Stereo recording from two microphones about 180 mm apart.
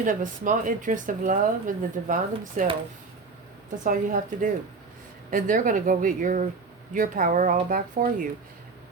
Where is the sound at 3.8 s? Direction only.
45° right (ahead or behind).